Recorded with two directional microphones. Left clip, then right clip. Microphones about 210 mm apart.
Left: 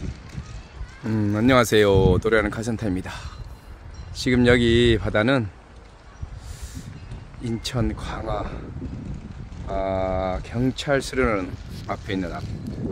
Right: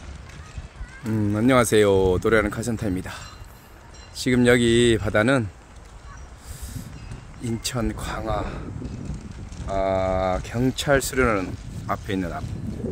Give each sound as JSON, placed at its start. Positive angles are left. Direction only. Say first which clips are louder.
{"t": 1.1, "sound": "speech", "louder": "left 1 dB", "side_deg": 0}
{"t": 7.4, "sound": "speech", "louder": "even", "side_deg": -10}
{"t": 9.7, "sound": "speech", "louder": "right 2 dB", "side_deg": -20}